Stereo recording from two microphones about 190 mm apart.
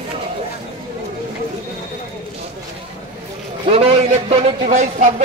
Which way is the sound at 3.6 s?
30° right (ahead or behind).